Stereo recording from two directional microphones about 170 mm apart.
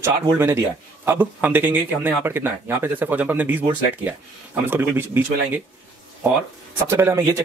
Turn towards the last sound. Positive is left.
turn(degrees=-15)  # may be behind; listen again after turning